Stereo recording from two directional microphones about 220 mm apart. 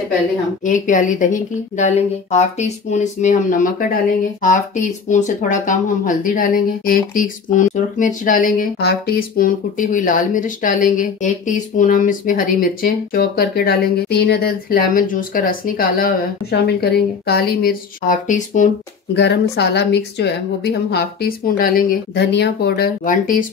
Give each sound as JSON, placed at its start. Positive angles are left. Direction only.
{"t": 0.7, "sound": "a woman's voice", "side_deg": 35}
{"t": 19.1, "sound": "speech", "side_deg": 50}